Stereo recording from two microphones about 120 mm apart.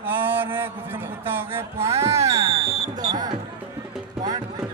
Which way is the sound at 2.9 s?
35° right (ahead or behind).